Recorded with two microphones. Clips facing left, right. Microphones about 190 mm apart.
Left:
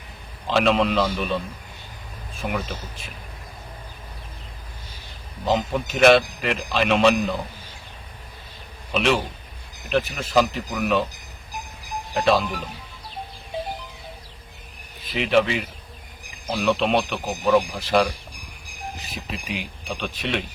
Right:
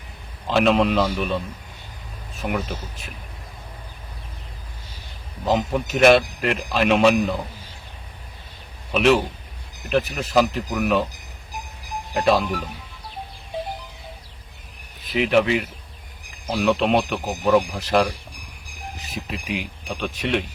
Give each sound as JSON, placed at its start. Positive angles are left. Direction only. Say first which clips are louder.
{"t": 0.4, "sound": "a man's voice", "louder": "right 2 dB", "side_deg": 0}
{"t": 2.4, "sound": "a man's voice", "louder": "right 2 dB", "side_deg": 0}
{"t": 5.5, "sound": "a man's voice", "louder": "right 1 dB", "side_deg": -5}
{"t": 8.9, "sound": "a man's voice", "louder": "right 4 dB", "side_deg": -5}
{"t": 12.1, "sound": "a man's voice", "louder": "right 1 dB", "side_deg": 0}
{"t": 15.1, "sound": "a man's voice", "louder": "right 2 dB", "side_deg": 0}
{"t": 19.3, "sound": "a man's voice", "louder": "right 2 dB", "side_deg": 0}